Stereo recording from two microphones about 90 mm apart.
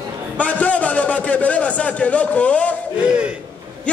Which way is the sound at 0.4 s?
15° left (ahead or behind).